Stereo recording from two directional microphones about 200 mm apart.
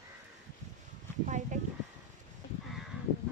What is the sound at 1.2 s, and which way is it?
Speech, 40° right (ahead or behind).